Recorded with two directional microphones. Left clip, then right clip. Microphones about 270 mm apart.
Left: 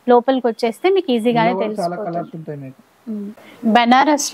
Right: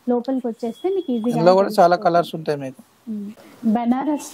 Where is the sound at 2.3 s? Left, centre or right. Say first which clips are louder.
Right 5 dB; right.